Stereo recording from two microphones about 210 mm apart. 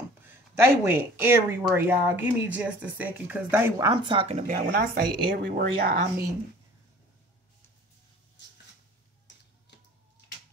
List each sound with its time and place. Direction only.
0.2 s speech: 10° right (ahead or behind); by 5.9 s 45° right (ahead or behind)